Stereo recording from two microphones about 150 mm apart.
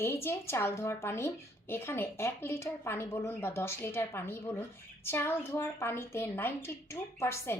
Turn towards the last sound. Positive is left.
turn(degrees=15)  # may be behind; listen again after turning